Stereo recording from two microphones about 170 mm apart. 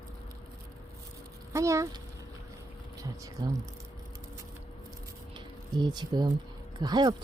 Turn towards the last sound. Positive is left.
turn(degrees=-25)  # may be behind; listen again after turning